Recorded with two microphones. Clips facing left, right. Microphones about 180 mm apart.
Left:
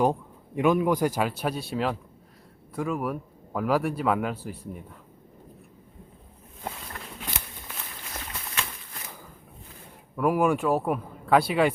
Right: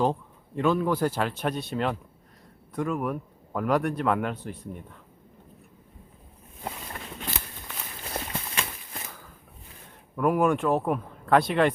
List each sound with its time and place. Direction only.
0.0 s speech: 10° left (ahead or behind)
8.1 s a sound: 30° right (ahead or behind)
10.2 s speech: 5° left (ahead or behind)